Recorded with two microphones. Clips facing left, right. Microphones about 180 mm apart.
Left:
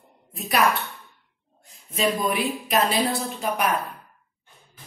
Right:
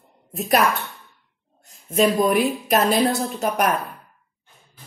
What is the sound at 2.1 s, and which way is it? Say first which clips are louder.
Speech: right 6 dB; 40° right (ahead or behind).